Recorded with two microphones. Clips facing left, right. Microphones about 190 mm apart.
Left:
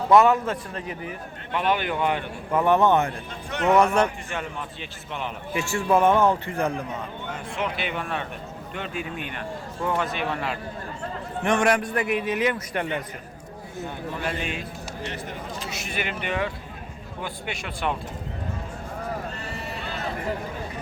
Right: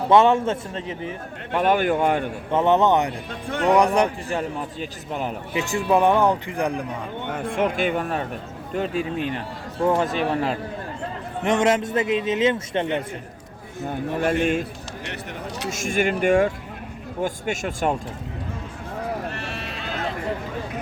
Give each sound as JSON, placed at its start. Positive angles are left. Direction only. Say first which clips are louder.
{"t": 0.1, "sound": "a man's voice", "louder": "right 1 dB", "side_deg": -25}
{"t": 1.5, "sound": "speech", "louder": "right 5 dB", "side_deg": -45}
{"t": 2.5, "sound": "a man's voice", "louder": "right 1 dB", "side_deg": -25}
{"t": 4.3, "sound": "speech", "louder": "right 6 dB", "side_deg": -40}
{"t": 5.5, "sound": "a man's voice", "louder": "right 1 dB", "side_deg": -20}
{"t": 7.3, "sound": "speech", "louder": "right 7 dB", "side_deg": -55}
{"t": 11.4, "sound": "a man's voice", "louder": "right 2 dB", "side_deg": -20}
{"t": 13.8, "sound": "speech", "louder": "right 8 dB", "side_deg": -50}
{"t": 15.0, "sound": "speech", "louder": "right 1 dB", "side_deg": -70}
{"t": 15.7, "sound": "speech", "louder": "right 11 dB", "side_deg": -45}
{"t": 19.3, "sound": "sheep", "louder": "right 2 dB", "side_deg": -85}